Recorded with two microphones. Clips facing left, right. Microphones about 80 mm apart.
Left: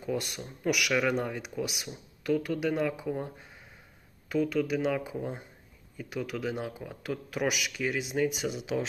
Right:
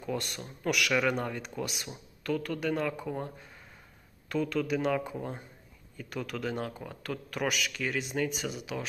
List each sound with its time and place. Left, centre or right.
0.0 s speech: centre
4.3 s speech: centre
8.5 s speech: left